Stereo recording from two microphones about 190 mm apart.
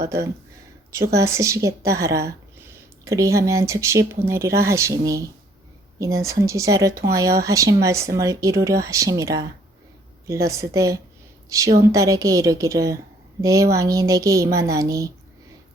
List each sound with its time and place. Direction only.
0.0 s a woman's voice: 15° right (ahead or behind)